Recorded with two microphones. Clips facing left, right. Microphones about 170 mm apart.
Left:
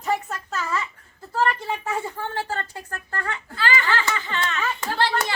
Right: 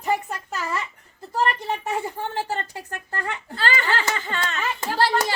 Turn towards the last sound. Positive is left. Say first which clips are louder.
# right 2 dB
turn(degrees=-40)  # may be behind; listen again after turning